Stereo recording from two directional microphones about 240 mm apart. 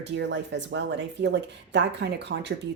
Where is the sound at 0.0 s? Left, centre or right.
Right.